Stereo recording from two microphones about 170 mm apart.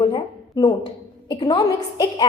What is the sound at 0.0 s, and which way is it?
A woman's voice, 30° left (ahead or behind).